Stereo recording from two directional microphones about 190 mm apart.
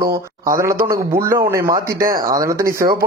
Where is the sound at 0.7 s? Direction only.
50° right (ahead or behind).